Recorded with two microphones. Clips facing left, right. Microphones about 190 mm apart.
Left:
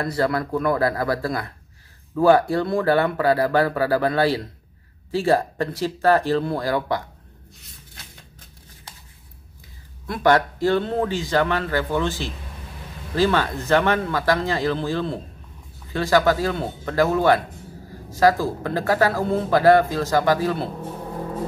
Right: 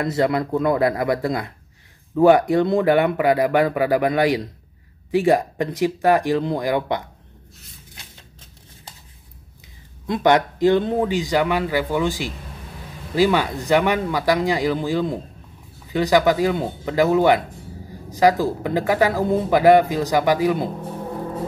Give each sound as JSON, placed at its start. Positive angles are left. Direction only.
{"t": 0.0, "sound": "speech", "side_deg": -20}
{"t": 10.0, "sound": "speech", "side_deg": -20}